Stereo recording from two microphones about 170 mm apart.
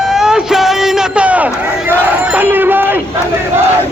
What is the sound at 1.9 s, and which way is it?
Crowd, 10° right (ahead or behind).